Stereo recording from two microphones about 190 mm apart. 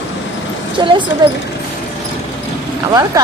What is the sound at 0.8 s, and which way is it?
Speech, 25° right (ahead or behind).